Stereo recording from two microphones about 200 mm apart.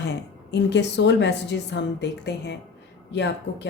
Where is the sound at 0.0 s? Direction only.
60° left (ahead or behind).